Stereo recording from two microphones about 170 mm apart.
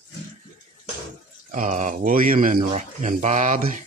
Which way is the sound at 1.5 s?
45° right (ahead or behind).